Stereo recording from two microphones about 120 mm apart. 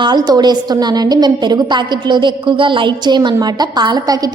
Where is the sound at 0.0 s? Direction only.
35° right (ahead or behind).